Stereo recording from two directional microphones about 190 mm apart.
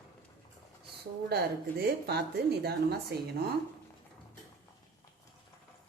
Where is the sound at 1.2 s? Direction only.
55° right (ahead or behind).